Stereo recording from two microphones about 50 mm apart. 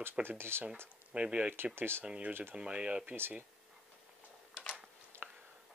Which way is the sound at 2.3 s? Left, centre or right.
Right.